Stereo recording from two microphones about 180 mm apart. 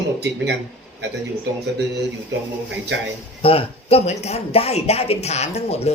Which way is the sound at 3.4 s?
30° left (ahead or behind).